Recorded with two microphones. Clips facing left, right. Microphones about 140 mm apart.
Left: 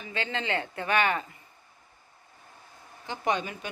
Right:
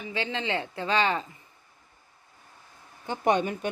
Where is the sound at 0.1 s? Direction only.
20° right (ahead or behind).